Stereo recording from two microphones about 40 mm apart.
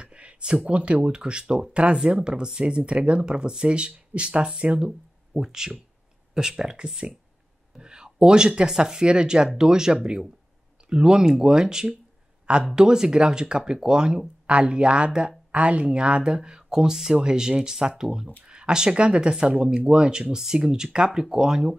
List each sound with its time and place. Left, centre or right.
0.0 s a sound: right
0.7 s speech: right
4.8 s speech: centre